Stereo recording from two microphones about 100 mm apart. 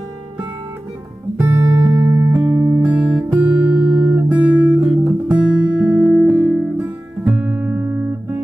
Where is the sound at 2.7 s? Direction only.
15° right (ahead or behind).